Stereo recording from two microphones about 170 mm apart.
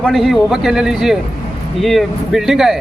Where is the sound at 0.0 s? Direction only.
Centre (ahead or behind).